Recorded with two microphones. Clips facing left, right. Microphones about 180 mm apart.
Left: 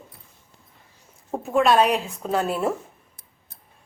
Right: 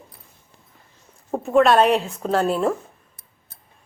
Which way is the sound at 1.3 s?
Centre (ahead or behind).